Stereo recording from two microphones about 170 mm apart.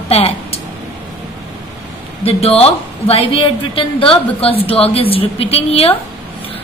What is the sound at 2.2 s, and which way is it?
A woman's voice, 35° left (ahead or behind).